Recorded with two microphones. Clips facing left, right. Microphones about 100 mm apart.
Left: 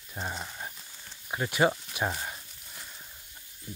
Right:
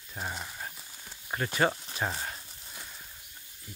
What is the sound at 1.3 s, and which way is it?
Speech, 15° left (ahead or behind).